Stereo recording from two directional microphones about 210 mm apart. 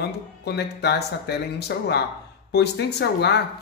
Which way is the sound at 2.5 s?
50° left (ahead or behind).